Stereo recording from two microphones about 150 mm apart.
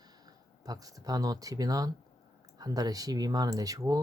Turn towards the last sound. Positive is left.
turn(degrees=-25)  # may be behind; listen again after turning